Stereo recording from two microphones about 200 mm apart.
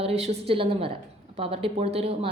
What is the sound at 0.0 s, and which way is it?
A woman's voice, 30° right (ahead or behind).